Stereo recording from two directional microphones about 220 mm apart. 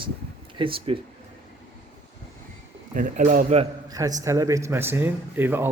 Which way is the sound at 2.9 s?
40° right (ahead or behind).